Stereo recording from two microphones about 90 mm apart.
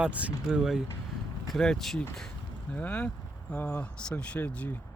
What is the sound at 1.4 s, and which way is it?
Speech, 5° left (ahead or behind).